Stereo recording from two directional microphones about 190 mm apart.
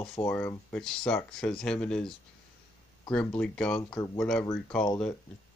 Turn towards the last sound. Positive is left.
turn(degrees=5)  # may be behind; listen again after turning